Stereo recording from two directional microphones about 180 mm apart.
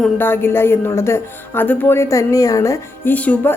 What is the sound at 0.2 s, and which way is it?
Speech, 10° left (ahead or behind).